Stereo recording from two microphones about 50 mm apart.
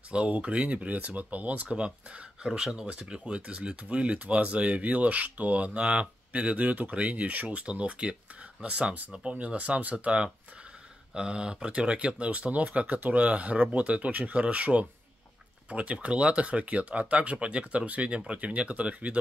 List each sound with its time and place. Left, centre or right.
0.1 s speech: right